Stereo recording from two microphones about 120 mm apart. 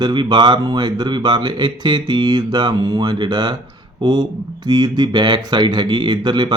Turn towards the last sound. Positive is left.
turn(degrees=-40)  # may be behind; listen again after turning